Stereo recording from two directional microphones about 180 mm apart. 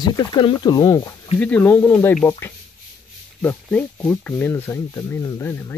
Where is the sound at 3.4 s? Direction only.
10° left (ahead or behind).